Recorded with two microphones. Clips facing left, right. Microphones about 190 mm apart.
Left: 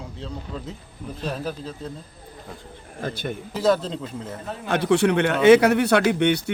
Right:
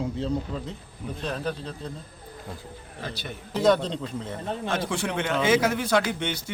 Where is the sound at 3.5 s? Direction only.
5° left (ahead or behind).